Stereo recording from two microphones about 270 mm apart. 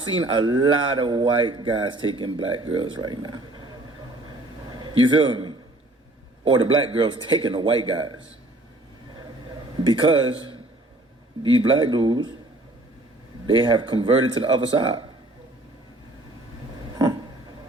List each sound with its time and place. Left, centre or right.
0.0 s a man's voice: centre
9.8 s speech: centre
13.6 s speech: centre